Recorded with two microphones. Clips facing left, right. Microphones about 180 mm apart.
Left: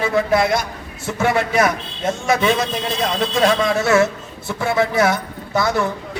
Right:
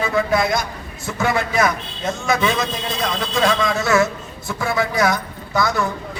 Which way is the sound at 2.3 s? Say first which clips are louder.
Left 2 dB; 30° left (ahead or behind).